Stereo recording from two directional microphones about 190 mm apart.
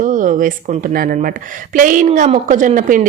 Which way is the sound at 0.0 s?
45° right (ahead or behind).